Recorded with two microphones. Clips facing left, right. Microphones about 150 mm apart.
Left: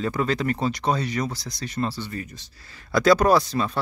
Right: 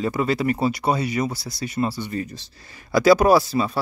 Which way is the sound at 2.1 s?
30° right (ahead or behind).